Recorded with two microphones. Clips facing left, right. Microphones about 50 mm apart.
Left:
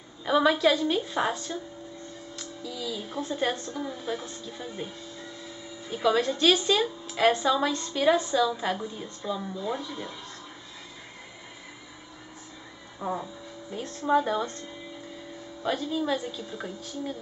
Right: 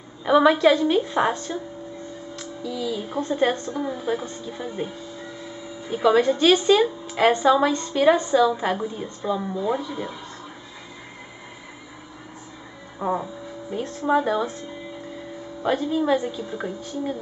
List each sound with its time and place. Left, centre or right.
0.2 s a woman's voice: centre
2.3 s music: centre
3.2 s a woman's voice: centre
13.0 s a woman's voice: centre